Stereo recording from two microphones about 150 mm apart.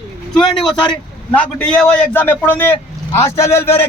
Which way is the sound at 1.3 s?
5° left (ahead or behind).